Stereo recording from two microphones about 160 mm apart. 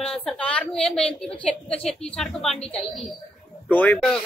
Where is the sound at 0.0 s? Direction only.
5° left (ahead or behind).